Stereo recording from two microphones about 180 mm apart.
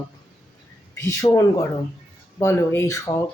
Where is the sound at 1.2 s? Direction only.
25° left (ahead or behind).